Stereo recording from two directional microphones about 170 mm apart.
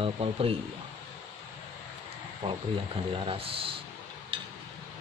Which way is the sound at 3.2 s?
35° right (ahead or behind).